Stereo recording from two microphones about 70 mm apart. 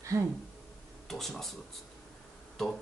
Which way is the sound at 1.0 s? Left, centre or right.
Centre.